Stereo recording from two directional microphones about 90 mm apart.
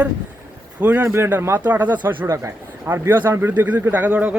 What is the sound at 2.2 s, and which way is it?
Speech, 30° right (ahead or behind).